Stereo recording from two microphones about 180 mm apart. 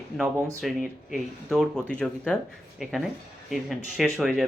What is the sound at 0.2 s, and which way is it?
Speech, 5° right (ahead or behind).